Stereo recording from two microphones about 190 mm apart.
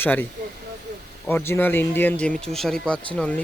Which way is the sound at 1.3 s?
10° left (ahead or behind).